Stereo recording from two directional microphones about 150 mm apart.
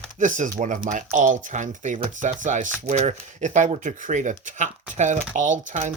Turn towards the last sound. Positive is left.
turn(degrees=-55)  # may be behind; listen again after turning